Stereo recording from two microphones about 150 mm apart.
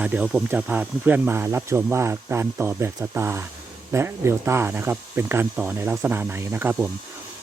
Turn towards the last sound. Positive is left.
turn(degrees=-15)  # may be behind; listen again after turning